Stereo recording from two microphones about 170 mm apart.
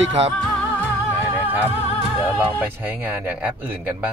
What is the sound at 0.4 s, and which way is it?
Music, 5° left (ahead or behind).